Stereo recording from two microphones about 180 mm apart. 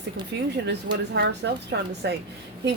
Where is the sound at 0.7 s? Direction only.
70° right (ahead or behind).